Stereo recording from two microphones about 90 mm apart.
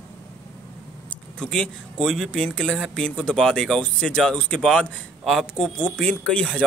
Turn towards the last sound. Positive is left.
turn(degrees=10)  # may be behind; listen again after turning